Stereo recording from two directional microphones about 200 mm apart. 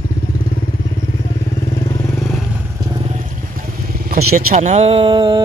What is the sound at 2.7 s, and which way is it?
Vehicle, 20° right (ahead or behind).